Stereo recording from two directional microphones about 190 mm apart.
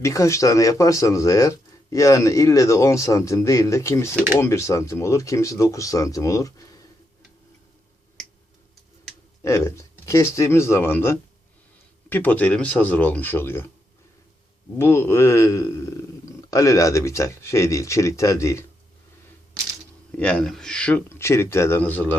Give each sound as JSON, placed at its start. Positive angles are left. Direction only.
{"t": 0.0, "sound": "speech", "side_deg": 15}
{"t": 9.4, "sound": "speech", "side_deg": 15}
{"t": 14.8, "sound": "speech", "side_deg": 10}
{"t": 20.1, "sound": "speech", "side_deg": 5}